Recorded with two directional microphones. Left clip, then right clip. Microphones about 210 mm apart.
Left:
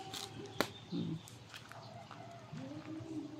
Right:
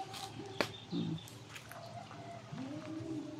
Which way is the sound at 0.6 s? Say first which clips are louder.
Right 1 dB; 50° left (ahead or behind).